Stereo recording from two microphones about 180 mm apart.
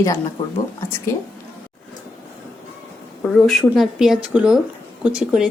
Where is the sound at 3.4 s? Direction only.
Centre (ahead or behind).